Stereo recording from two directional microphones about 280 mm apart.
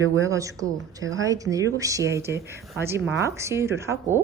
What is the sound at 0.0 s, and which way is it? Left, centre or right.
A woman's voice, centre.